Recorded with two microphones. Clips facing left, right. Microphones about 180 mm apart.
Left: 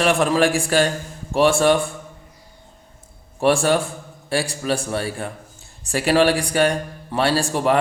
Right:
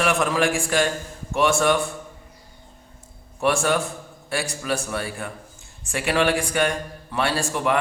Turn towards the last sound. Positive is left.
turn(degrees=35)  # may be behind; listen again after turning